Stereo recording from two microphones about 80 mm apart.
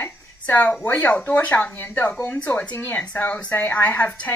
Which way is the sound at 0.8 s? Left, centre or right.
Left.